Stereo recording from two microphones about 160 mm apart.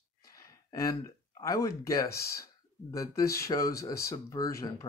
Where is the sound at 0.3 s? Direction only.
20° left (ahead or behind).